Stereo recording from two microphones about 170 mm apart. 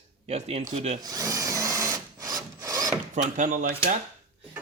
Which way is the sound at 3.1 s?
45° right (ahead or behind).